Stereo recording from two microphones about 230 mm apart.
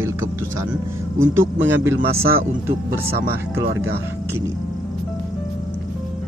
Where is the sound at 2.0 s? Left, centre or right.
Right.